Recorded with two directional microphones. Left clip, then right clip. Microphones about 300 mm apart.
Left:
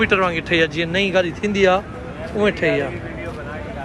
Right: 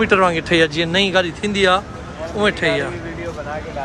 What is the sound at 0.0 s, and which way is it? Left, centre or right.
Speech, centre.